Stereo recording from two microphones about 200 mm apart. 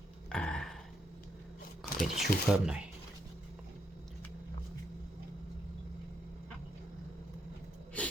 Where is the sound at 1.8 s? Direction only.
Centre (ahead or behind).